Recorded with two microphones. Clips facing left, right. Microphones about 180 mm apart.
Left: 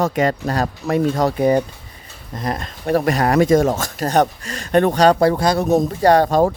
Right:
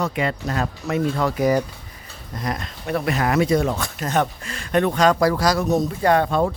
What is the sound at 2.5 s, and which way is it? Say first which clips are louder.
Speech: left 10 dB; 45° left (ahead or behind).